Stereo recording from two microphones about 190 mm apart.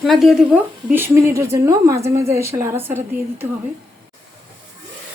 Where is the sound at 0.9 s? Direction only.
10° right (ahead or behind).